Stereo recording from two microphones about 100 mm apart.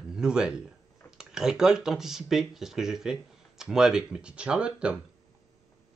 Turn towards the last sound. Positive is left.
turn(degrees=-10)  # may be behind; listen again after turning